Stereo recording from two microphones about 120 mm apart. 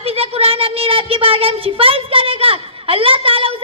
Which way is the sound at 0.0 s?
55° right (ahead or behind).